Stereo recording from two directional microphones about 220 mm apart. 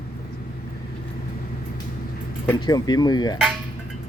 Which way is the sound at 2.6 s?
20° left (ahead or behind).